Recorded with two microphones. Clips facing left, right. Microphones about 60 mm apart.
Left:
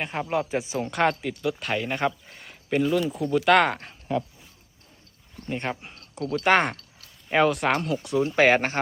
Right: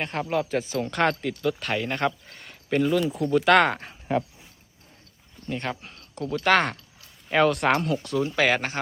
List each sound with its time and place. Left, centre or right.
0.0 s speech: centre
5.5 s speech: left
5.9 s a sound: centre
6.4 s speech: left
7.3 s speech: centre
8.0 s speech: left